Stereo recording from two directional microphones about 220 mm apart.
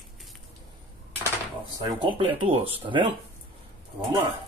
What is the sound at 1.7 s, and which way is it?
Speech, 20° right (ahead or behind).